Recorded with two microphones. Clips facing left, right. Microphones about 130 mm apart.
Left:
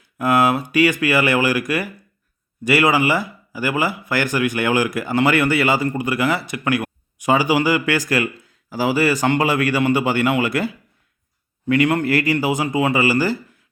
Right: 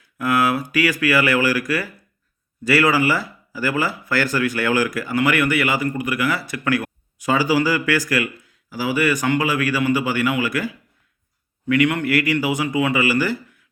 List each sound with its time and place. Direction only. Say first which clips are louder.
0.0 s speech: left 3 dB; 25° left (ahead or behind)